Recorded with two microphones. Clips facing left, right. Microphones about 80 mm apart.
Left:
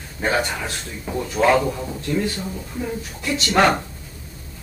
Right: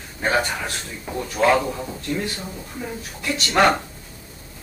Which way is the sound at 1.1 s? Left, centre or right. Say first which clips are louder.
Left 1 dB; centre.